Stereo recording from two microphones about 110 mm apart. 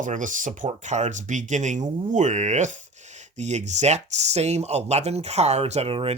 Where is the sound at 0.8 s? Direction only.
90° right.